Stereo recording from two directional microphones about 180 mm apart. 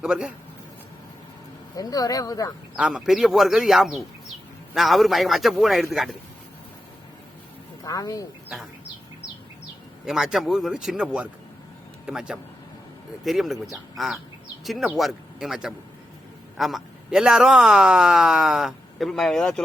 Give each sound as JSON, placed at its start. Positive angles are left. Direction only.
{"t": 0.0, "sound": "speech", "side_deg": -5}
{"t": 1.7, "sound": "speech", "side_deg": 20}
{"t": 2.7, "sound": "speech", "side_deg": -5}
{"t": 7.9, "sound": "speech", "side_deg": 20}
{"t": 10.1, "sound": "speech", "side_deg": -5}